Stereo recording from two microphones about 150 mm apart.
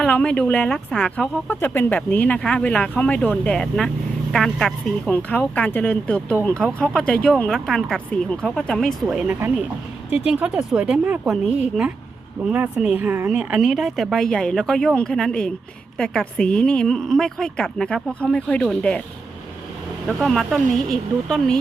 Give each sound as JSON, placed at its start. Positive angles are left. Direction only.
{"t": 0.0, "sound": "speech", "side_deg": 10}
{"t": 10.1, "sound": "speech", "side_deg": 45}
{"t": 10.4, "sound": "speech", "side_deg": -5}
{"t": 12.5, "sound": "speech", "side_deg": -10}
{"t": 20.1, "sound": "speech", "side_deg": 0}